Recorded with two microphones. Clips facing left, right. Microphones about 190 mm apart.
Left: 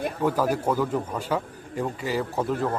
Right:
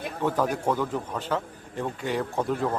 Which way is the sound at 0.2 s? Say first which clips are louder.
Left 1 dB; 5° left (ahead or behind).